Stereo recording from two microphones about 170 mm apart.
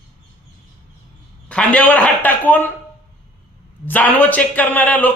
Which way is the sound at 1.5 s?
5° left (ahead or behind).